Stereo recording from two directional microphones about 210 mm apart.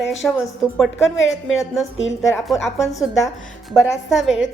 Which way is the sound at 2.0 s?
65° left (ahead or behind).